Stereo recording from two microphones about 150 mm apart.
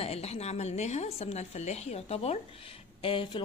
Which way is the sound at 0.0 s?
45° left (ahead or behind).